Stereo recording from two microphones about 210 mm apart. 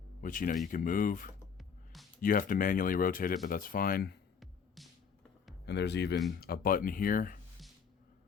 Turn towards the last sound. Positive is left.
turn(degrees=40)  # may be behind; listen again after turning